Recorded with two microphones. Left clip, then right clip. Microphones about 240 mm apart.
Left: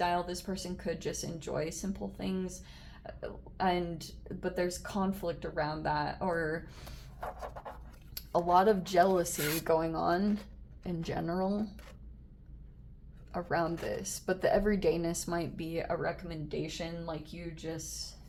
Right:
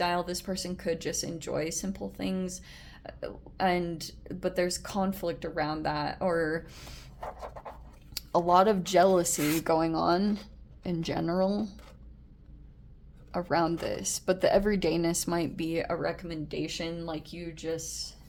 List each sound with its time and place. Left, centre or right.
0.0 s speech: right
7.3 s a sound: centre
8.1 s speech: right
13.3 s speech: right